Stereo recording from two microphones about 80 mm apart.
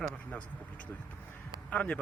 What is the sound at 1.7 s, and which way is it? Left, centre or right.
Speech, centre.